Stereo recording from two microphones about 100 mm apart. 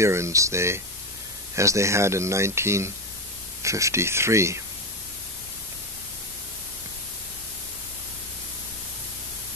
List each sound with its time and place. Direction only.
0.0 s speech: 30° right (ahead or behind)